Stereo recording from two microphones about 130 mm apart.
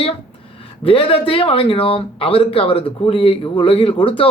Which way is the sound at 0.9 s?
45° left (ahead or behind).